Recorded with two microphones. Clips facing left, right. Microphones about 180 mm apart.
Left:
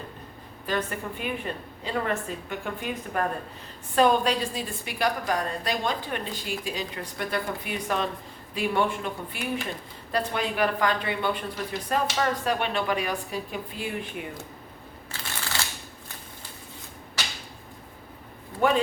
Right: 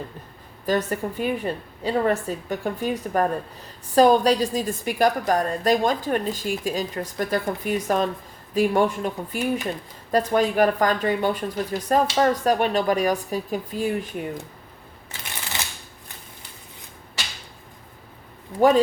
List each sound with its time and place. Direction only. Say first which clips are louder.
0.6 s a woman's voice: right 6 dB; 40° right (ahead or behind)
15.1 s a sound: even; 20° right (ahead or behind)
18.6 s speech: right 6 dB; 35° right (ahead or behind)